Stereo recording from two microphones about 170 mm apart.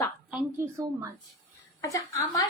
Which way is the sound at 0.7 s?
20° right (ahead or behind).